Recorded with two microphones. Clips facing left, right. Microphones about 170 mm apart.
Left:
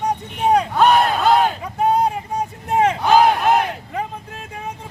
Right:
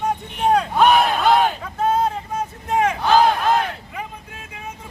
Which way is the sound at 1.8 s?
15° left (ahead or behind).